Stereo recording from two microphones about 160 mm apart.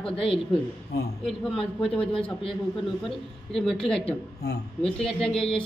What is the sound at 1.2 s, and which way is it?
A man's voice, 5° left (ahead or behind).